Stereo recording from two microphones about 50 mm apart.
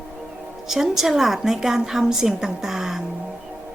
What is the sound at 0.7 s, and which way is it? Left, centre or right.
A woman's voice, centre.